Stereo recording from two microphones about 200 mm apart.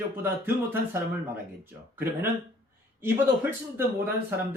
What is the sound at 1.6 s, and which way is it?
Speech, 10° right (ahead or behind).